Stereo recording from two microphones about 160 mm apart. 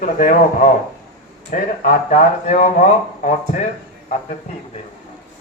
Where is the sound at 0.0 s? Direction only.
60° left (ahead or behind).